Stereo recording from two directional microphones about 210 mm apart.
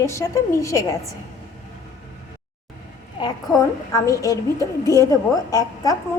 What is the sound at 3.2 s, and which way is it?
A woman's voice, 15° left (ahead or behind).